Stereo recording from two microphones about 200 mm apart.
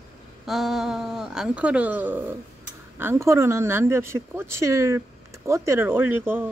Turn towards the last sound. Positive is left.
turn(degrees=-10)  # may be behind; listen again after turning